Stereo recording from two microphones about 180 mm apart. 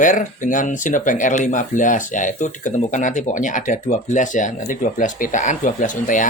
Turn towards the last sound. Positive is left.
turn(degrees=45)  # may be behind; listen again after turning